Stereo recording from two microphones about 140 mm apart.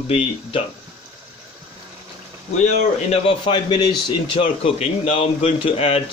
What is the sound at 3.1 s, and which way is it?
A man's voice, 40° left (ahead or behind).